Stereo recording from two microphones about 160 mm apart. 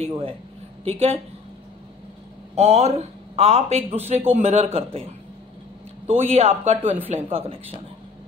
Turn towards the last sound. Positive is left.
turn(degrees=-35)  # may be behind; listen again after turning